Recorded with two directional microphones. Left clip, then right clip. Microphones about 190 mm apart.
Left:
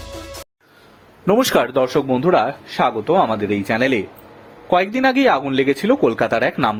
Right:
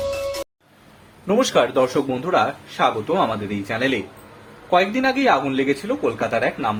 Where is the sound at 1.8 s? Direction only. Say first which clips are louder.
Left 4 dB; 35° left (ahead or behind).